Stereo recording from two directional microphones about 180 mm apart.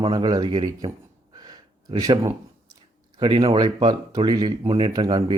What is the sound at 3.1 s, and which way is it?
Speech, 25° right (ahead or behind).